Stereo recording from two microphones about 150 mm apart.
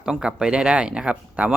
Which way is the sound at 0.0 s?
5° right (ahead or behind).